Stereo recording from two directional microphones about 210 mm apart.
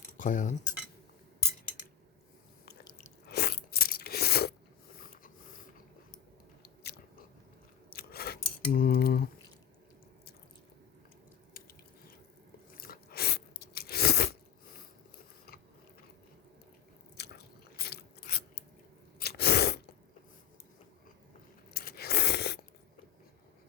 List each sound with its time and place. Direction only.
0.2 s speech: 35° left (ahead or behind)
3.2 s crunch: 50° left (ahead or behind)
4.9 s mechanisms: 45° left (ahead or behind)
6.8 s biting: 50° left (ahead or behind)
7.9 s scissors: 45° left (ahead or behind)
12.7 s chewing: 45° left (ahead or behind)
17.2 s biting: 50° left (ahead or behind)
19.2 s sneeze: 50° left (ahead or behind)
21.7 s a sound: 50° left (ahead or behind)